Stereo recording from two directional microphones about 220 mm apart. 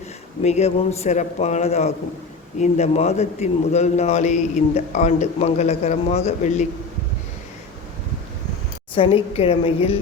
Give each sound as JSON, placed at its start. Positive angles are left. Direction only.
{"t": 0.4, "sound": "a man's voice", "side_deg": 30}
{"t": 9.0, "sound": "a man's voice", "side_deg": 25}